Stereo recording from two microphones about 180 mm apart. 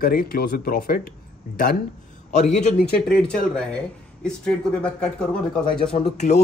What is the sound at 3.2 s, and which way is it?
Speech, 5° left (ahead or behind).